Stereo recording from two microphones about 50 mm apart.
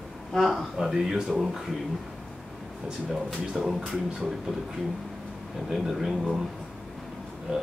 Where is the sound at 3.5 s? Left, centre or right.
Centre.